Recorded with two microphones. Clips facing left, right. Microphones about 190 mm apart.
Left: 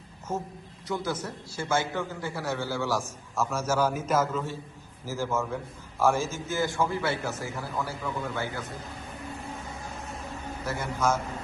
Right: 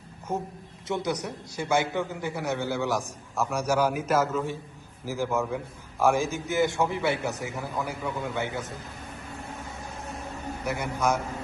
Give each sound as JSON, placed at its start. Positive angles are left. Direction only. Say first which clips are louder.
{"t": 0.9, "sound": "a man's voice", "louder": "right 2 dB", "side_deg": -25}
{"t": 10.7, "sound": "a man's voice", "louder": "right 1 dB", "side_deg": -15}